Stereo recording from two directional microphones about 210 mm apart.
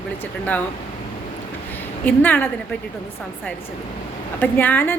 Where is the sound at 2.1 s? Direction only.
5° left (ahead or behind).